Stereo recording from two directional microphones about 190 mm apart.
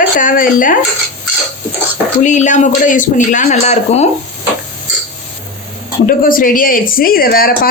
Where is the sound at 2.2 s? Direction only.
40° left (ahead or behind).